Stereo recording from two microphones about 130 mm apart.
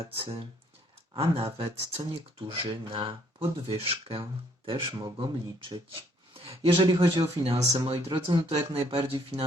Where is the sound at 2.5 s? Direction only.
45° right (ahead or behind).